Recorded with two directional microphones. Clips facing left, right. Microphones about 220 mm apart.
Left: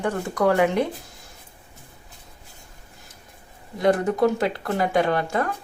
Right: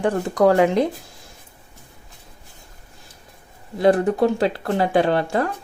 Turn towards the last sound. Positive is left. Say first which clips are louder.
# right 3 dB
turn(degrees=-30)  # may be behind; listen again after turning